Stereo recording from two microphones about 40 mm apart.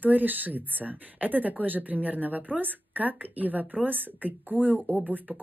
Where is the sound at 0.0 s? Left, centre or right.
Right.